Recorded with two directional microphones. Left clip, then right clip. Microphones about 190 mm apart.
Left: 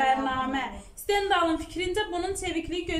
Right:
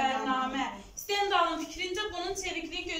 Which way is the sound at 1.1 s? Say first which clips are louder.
Left 3 dB; 45° left (ahead or behind).